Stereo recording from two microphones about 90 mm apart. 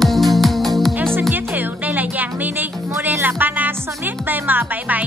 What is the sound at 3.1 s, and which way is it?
Music, 20° right (ahead or behind).